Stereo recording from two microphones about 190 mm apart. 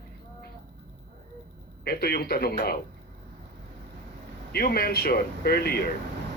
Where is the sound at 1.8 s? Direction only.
55° left (ahead or behind).